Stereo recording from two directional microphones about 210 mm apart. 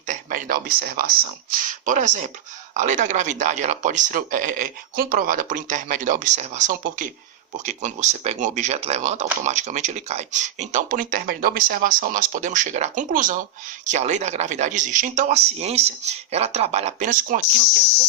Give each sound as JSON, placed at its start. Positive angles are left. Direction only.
{"t": 0.1, "sound": "speech", "side_deg": -40}